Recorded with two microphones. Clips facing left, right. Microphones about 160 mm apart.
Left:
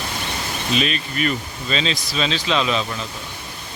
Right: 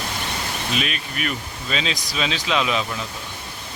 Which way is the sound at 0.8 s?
5° right (ahead or behind).